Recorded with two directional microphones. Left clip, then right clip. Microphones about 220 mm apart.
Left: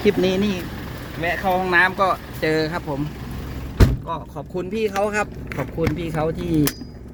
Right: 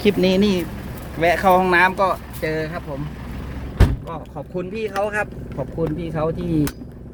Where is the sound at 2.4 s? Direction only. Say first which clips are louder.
Left 4 dB; 20° left (ahead or behind).